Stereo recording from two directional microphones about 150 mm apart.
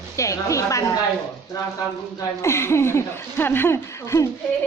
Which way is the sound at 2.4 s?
15° left (ahead or behind).